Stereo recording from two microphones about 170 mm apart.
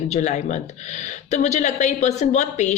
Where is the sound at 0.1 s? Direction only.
45° left (ahead or behind).